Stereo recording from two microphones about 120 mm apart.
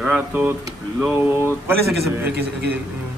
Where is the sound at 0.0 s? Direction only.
15° right (ahead or behind).